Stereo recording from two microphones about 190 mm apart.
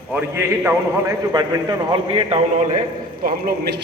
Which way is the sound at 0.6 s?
20° right (ahead or behind).